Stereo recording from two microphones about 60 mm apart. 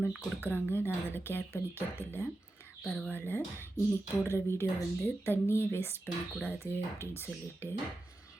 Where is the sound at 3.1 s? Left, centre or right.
Left.